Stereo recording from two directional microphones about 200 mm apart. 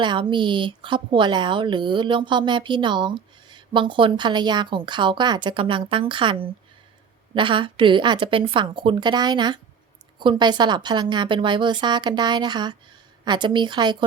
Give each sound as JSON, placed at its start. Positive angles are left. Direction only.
{"t": 0.0, "sound": "speech", "side_deg": -25}